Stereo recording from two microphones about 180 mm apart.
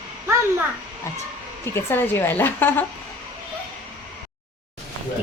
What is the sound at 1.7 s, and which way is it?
A woman's voice, 10° left (ahead or behind).